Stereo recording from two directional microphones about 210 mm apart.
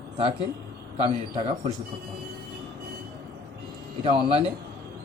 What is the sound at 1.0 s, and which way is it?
Speech, 25° right (ahead or behind).